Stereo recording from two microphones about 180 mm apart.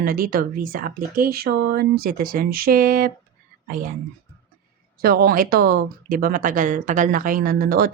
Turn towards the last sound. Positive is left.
turn(degrees=-55)  # may be behind; listen again after turning